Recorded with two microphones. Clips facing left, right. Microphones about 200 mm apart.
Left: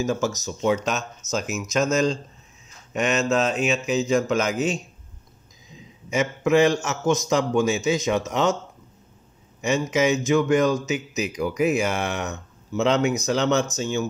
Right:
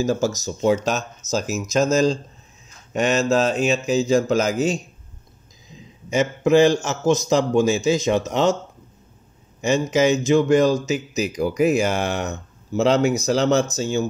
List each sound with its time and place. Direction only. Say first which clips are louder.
0.0 s a man's voice: right 3 dB; 35° right (ahead or behind)
6.0 s a man's voice: right 3 dB; 30° right (ahead or behind)
9.6 s a man's voice: right 3 dB; 35° right (ahead or behind)